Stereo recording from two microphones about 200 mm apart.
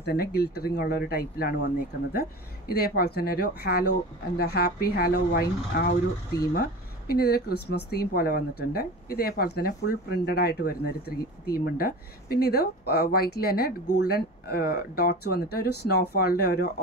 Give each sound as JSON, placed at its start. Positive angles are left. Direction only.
{"t": 0.0, "sound": "speech", "side_deg": 50}
{"t": 2.7, "sound": "speech", "side_deg": 50}